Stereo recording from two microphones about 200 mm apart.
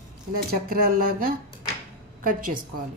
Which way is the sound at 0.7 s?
45° right (ahead or behind).